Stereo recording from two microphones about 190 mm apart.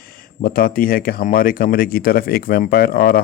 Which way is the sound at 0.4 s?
50° left (ahead or behind).